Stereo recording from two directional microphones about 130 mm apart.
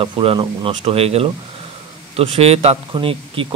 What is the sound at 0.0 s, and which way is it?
Speech, 45° right (ahead or behind).